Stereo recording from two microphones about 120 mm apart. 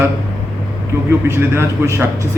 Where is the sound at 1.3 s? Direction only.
20° right (ahead or behind).